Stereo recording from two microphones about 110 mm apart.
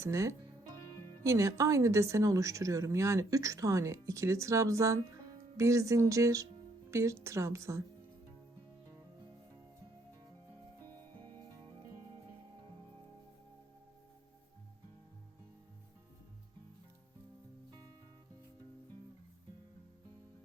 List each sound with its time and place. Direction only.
0.0 s music: 25° right (ahead or behind)
1.2 s speech: 30° right (ahead or behind)
17.7 s music: 35° right (ahead or behind)